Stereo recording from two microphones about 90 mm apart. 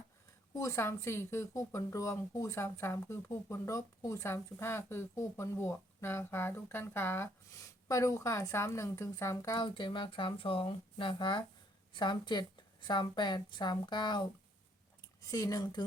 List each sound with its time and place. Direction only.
0.5 s speech: 35° left (ahead or behind)
7.6 s a woman's voice: 40° left (ahead or behind)
9.6 s a woman's voice: 60° left (ahead or behind)
15.2 s speech: 40° left (ahead or behind)